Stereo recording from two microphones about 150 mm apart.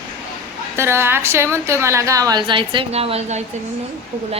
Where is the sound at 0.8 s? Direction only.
15° right (ahead or behind); by 3.4 s 45° right (ahead or behind).